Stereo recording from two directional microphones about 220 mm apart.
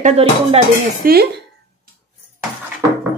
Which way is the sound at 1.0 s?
45° right (ahead or behind).